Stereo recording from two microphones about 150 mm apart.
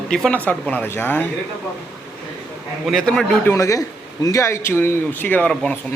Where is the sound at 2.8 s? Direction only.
5° left (ahead or behind).